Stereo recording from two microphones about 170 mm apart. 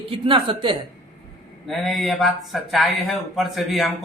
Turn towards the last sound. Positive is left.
turn(degrees=0)  # may be behind; listen again after turning